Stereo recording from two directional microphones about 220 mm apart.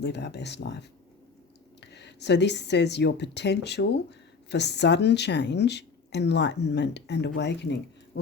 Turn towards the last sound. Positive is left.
turn(degrees=50)  # may be behind; listen again after turning